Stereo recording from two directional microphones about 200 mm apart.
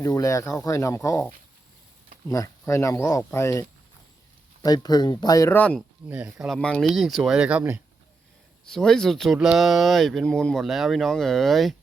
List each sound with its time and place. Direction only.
0.0 s speech: 15° left (ahead or behind)
6.1 s speech: 5° right (ahead or behind)
8.6 s speech: 5° left (ahead or behind)